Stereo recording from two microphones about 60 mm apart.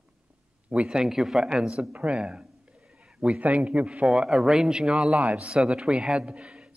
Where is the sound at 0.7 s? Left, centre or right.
Centre.